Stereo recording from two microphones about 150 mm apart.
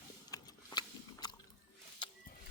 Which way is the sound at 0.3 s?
25° left (ahead or behind).